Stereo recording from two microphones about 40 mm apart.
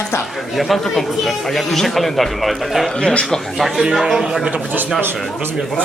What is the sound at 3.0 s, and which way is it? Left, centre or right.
Speech, centre.